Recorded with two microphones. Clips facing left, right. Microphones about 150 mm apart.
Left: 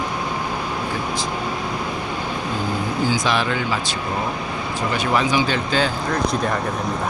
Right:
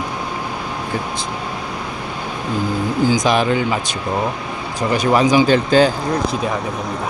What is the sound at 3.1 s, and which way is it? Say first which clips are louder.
Speech: right 5 dB; 45° right (ahead or behind).